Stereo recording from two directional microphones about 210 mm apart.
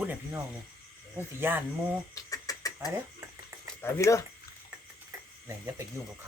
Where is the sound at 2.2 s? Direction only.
15° left (ahead or behind).